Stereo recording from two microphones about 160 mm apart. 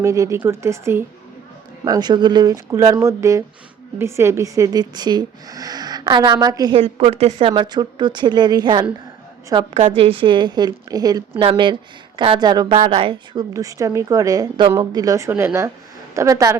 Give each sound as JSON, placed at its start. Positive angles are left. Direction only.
{"t": 0.0, "sound": "speech", "side_deg": -20}
{"t": 6.7, "sound": "a woman's voice", "side_deg": -40}
{"t": 13.5, "sound": "speech", "side_deg": -20}